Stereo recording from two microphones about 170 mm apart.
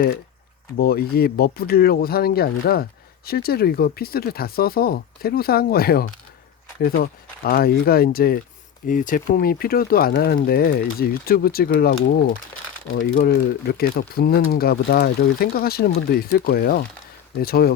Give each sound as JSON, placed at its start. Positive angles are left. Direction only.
{"t": 0.8, "sound": "speech", "side_deg": 65}
{"t": 8.9, "sound": "speech", "side_deg": 50}